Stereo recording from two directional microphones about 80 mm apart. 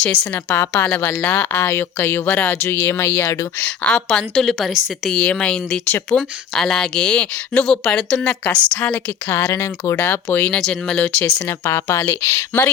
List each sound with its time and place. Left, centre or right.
0.4 s speech: left
3.8 s a woman's voice: centre
5.1 s speech: centre
5.9 s speech: left
6.6 s speech: centre
9.5 s speech: left
10.6 s speech: centre
11.4 s a woman's voice: left